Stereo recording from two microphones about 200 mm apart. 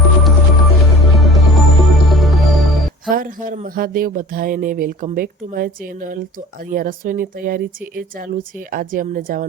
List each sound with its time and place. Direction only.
0.0 s music: centre (ahead or behind)
3.1 s speech: 45° right (ahead or behind)